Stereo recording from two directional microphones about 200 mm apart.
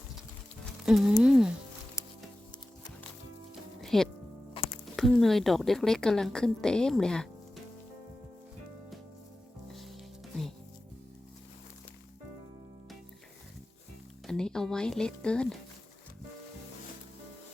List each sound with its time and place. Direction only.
0.6 s insect: centre (ahead or behind)
2.0 s music: 15° left (ahead or behind)
3.8 s music: centre (ahead or behind)
4.6 s music: 25° left (ahead or behind)
4.9 s a woman's voice: centre (ahead or behind)
14.3 s music: 5° left (ahead or behind)